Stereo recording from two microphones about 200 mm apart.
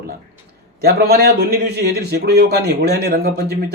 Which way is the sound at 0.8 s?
50° right (ahead or behind).